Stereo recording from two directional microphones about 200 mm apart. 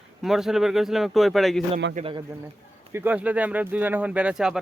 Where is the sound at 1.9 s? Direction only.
35° right (ahead or behind).